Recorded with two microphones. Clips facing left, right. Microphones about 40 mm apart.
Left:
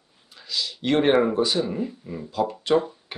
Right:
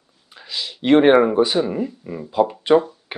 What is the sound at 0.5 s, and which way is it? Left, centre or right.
Speech, right.